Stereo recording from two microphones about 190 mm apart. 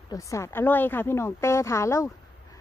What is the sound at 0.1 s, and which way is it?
Speech, 15° left (ahead or behind).